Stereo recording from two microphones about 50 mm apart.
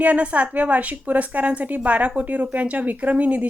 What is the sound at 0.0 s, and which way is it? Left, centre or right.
A woman's voice, right.